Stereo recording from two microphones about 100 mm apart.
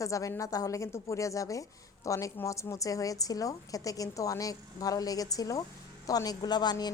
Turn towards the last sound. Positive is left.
turn(degrees=45)  # may be behind; listen again after turning